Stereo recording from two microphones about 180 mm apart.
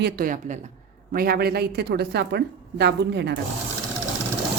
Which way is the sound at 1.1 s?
55° right (ahead or behind).